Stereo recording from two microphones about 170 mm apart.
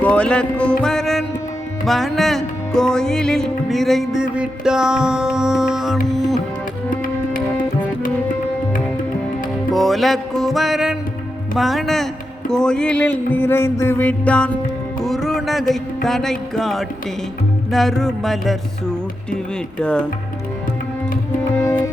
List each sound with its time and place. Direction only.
0.0 s music: 5° left (ahead or behind)
9.7 s music: centre (ahead or behind)
12.5 s mantra: 5° left (ahead or behind)
15.0 s a sound: centre (ahead or behind)
16.0 s music: centre (ahead or behind)
21.5 s music: 15° left (ahead or behind)